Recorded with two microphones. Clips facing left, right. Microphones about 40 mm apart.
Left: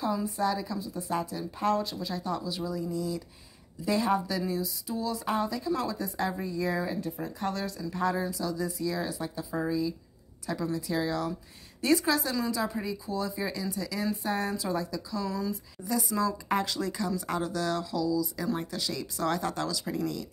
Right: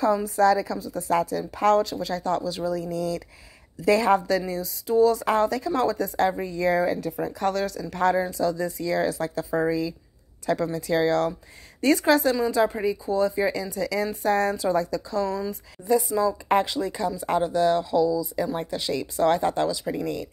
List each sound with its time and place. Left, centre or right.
0.0 s a woman's voice: right
4.4 s speech: right
7.9 s speech: right
10.4 s speech: right
11.8 s speech: right
15.4 s speech: right